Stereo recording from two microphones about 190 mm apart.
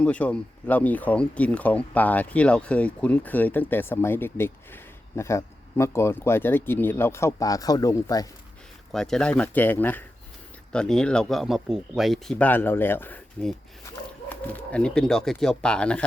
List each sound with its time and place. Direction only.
0.0 s speech: 5° left (ahead or behind)
8.9 s speech: 5° left (ahead or behind)